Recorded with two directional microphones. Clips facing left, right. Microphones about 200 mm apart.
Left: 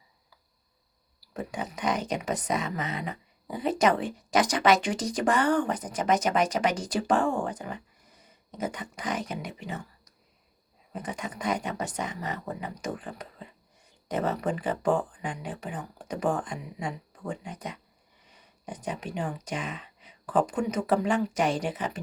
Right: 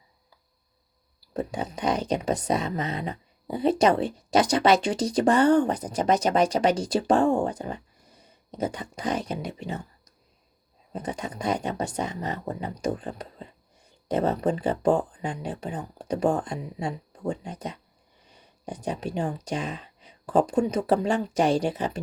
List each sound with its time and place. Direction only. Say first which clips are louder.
1.3 s speech: right 4 dB; 35° right (ahead or behind)
8.5 s speech: right 4 dB; 35° right (ahead or behind)
10.9 s speech: right 3 dB; 35° right (ahead or behind)
15.8 s speech: right 5 dB; 25° right (ahead or behind)